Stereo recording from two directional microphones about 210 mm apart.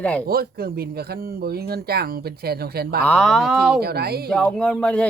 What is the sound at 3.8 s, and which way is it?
Speech, 50° right (ahead or behind).